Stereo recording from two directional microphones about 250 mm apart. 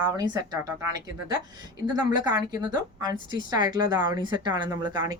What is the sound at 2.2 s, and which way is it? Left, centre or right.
Speech, centre.